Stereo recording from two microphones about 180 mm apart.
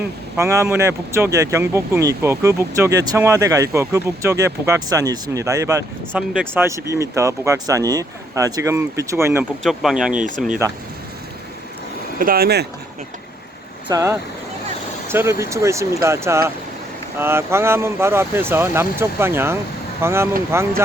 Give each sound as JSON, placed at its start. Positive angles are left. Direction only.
{"t": 0.3, "sound": "speech", "side_deg": -15}
{"t": 6.1, "sound": "speech", "side_deg": -5}
{"t": 9.6, "sound": "speech", "side_deg": 0}
{"t": 10.2, "sound": "speech", "side_deg": -45}
{"t": 12.2, "sound": "speech", "side_deg": -55}
{"t": 13.8, "sound": "speech", "side_deg": -20}